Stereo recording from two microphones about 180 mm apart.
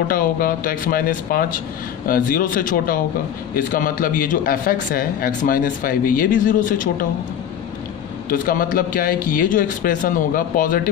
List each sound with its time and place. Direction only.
0.1 s speech: 55° left (ahead or behind)
8.3 s speech: 50° left (ahead or behind)